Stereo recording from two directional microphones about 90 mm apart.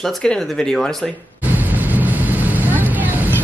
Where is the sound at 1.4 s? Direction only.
20° right (ahead or behind).